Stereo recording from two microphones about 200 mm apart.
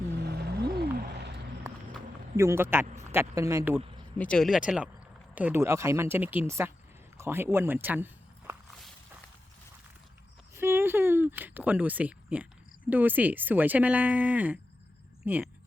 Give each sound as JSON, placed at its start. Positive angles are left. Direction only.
{"t": 0.2, "sound": "music", "side_deg": -55}
{"t": 2.3, "sound": "speech", "side_deg": -15}
{"t": 4.2, "sound": "speech", "side_deg": 5}
{"t": 10.5, "sound": "a sound", "side_deg": -10}
{"t": 12.9, "sound": "speech", "side_deg": -10}